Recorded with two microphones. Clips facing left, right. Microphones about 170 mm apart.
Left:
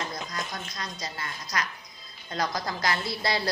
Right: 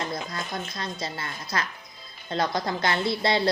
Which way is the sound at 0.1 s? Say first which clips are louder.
Right 3 dB; 30° right (ahead or behind).